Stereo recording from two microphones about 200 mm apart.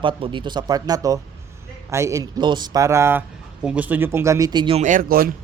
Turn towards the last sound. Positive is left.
turn(degrees=-45)  # may be behind; listen again after turning